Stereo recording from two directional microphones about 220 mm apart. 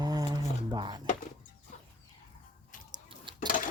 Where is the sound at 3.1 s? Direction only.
20° right (ahead or behind).